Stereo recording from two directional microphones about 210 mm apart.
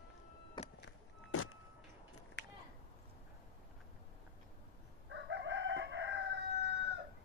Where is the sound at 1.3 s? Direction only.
85° left.